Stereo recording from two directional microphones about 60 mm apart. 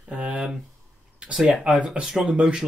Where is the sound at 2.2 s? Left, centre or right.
Centre.